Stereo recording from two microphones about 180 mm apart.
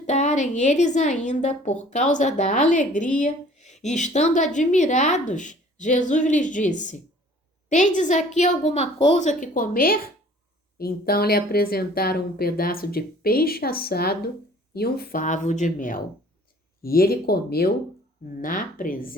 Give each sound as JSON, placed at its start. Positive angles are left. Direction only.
{"t": 0.0, "sound": "a woman's voice", "side_deg": 40}